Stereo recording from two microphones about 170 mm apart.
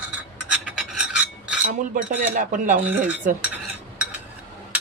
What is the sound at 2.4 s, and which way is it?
Speech, 50° right (ahead or behind).